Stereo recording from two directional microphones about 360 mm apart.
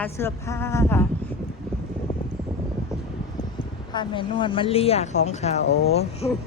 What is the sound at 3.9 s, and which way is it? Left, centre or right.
Speech, centre.